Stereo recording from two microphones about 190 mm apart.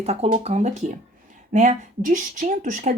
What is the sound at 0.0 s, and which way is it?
A woman's voice, 35° right (ahead or behind).